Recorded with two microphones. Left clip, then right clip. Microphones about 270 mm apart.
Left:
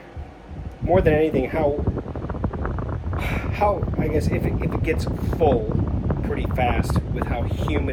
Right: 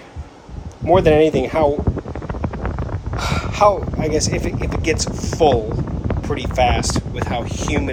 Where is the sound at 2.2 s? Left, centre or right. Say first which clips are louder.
Right 3 dB; right.